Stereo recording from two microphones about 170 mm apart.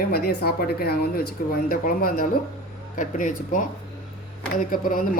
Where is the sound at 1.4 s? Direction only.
55° left (ahead or behind).